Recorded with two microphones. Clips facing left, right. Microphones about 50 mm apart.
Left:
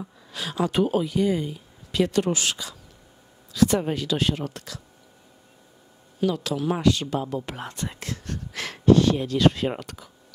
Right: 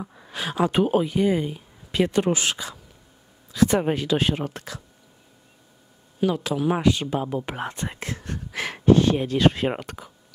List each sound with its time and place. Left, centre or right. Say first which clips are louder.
0.0 s speech: right 3 dB; right
6.2 s speech: right 2 dB; right